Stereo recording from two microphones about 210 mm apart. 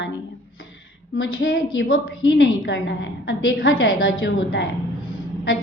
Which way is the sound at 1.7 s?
60° left (ahead or behind).